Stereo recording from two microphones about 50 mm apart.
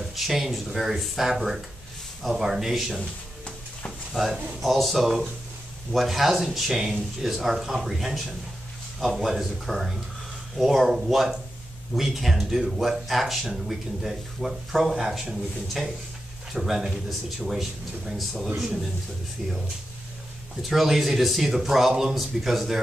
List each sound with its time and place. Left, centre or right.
0.1 s speech: centre
3.0 s music: left
4.1 s speech: centre
20.6 s speech: centre